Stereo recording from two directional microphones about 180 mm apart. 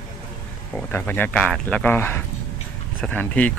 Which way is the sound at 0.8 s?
10° left (ahead or behind).